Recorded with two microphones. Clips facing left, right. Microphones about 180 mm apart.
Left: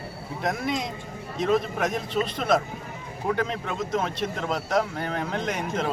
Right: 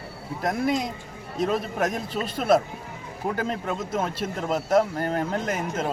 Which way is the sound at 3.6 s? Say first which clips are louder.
Even; 5° right (ahead or behind).